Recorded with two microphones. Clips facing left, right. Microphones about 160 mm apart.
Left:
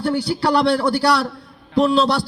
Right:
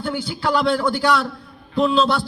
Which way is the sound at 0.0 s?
35° left (ahead or behind).